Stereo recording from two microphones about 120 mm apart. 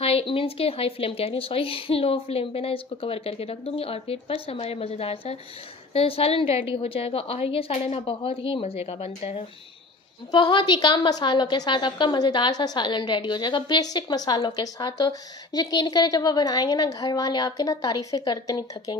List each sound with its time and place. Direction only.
0.0 s a woman's voice: 50° left (ahead or behind)
10.3 s a woman's voice: 40° left (ahead or behind)